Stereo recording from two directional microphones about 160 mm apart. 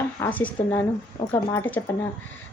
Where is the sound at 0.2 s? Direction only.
10° left (ahead or behind).